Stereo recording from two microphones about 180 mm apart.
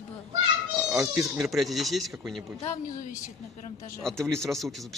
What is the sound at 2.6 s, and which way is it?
Speech, 35° left (ahead or behind).